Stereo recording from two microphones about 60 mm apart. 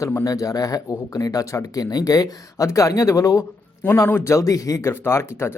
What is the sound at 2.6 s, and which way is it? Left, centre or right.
Speech, left.